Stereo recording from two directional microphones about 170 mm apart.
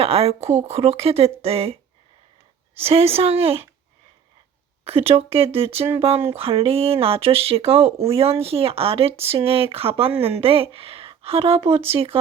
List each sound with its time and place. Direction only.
0.0 s a woman's voice: 35° right (ahead or behind)
4.9 s a woman's voice: 35° right (ahead or behind)